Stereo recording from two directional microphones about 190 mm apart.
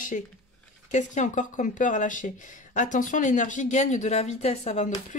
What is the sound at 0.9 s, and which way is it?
Speech, 40° left (ahead or behind).